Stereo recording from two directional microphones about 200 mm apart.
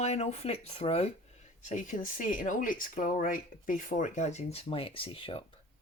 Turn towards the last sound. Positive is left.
turn(degrees=25)  # may be behind; listen again after turning